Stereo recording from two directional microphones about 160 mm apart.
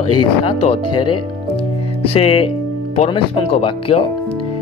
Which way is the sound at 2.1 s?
35° left (ahead or behind).